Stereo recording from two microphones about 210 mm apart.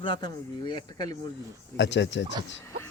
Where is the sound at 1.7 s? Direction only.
60° left (ahead or behind).